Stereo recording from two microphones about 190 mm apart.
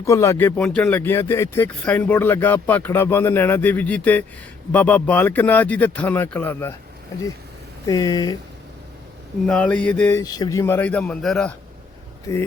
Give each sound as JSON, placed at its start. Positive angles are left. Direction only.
{"t": 0.0, "sound": "speech", "side_deg": 15}
{"t": 7.9, "sound": "speech", "side_deg": 20}
{"t": 9.5, "sound": "speech", "side_deg": 5}
{"t": 12.3, "sound": "speech", "side_deg": 15}